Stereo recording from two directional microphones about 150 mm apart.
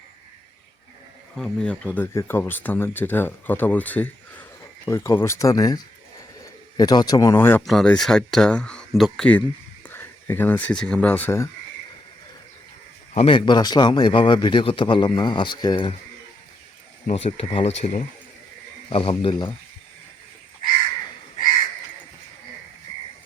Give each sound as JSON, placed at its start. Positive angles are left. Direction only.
{"t": 1.4, "sound": "speech", "side_deg": 5}
{"t": 7.6, "sound": "speech", "side_deg": 0}
{"t": 13.1, "sound": "speech", "side_deg": 35}
{"t": 17.1, "sound": "speech", "side_deg": 40}